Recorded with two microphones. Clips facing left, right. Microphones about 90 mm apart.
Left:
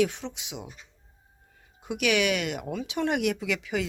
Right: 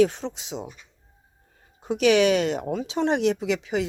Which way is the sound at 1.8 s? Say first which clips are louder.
Right 7 dB; 35° right (ahead or behind).